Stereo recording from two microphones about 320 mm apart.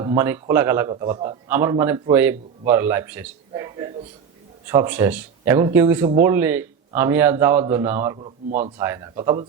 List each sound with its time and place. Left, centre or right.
0.0 s a man's voice: centre
8.4 s speech: right
8.8 s a man's voice: centre